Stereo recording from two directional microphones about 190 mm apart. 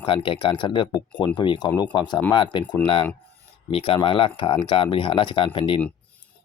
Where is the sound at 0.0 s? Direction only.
25° left (ahead or behind).